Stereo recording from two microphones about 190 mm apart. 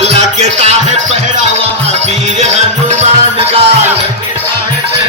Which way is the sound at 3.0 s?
30° right (ahead or behind).